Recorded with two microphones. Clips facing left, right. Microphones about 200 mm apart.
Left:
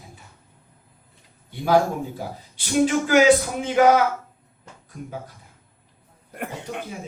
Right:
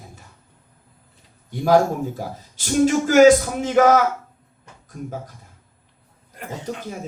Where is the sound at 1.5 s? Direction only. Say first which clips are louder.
Right 3 dB; 45° right (ahead or behind).